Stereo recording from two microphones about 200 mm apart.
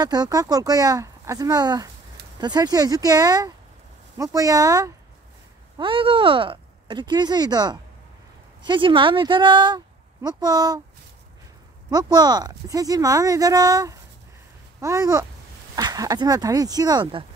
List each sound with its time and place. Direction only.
0.0 s speech: 20° right (ahead or behind)
11.9 s speech: 20° right (ahead or behind)